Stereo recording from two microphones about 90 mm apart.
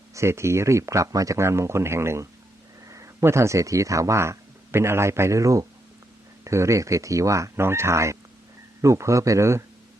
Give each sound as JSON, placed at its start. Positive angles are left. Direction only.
{"t": 0.1, "sound": "speech", "side_deg": -30}